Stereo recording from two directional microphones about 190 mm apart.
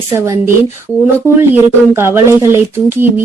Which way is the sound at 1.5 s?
15° right (ahead or behind).